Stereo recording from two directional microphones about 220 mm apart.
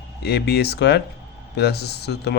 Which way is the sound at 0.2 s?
45° left (ahead or behind).